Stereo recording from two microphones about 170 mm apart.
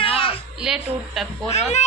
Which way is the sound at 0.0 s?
30° left (ahead or behind).